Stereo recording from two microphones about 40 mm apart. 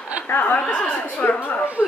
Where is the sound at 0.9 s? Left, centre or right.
Left.